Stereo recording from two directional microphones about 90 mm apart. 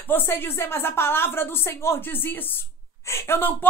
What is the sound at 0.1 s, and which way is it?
Speech, 25° left (ahead or behind).